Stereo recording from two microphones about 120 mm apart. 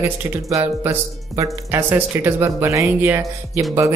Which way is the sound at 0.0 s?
25° right (ahead or behind).